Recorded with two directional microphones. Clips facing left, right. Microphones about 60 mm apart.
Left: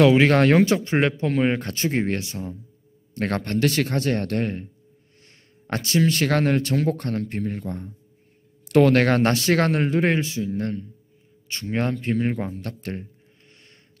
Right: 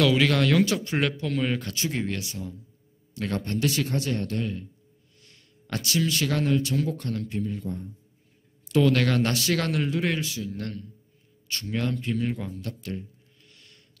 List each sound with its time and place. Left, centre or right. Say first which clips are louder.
0.0 s speech: left 6 dB; left
3.2 s speech: left 5 dB; left
5.2 s speech: left 4 dB; left
11.6 s speech: left 4 dB; left
13.5 s a sound: left 2 dB; left